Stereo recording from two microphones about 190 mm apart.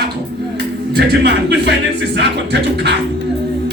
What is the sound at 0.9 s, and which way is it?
Speech, 60° right (ahead or behind).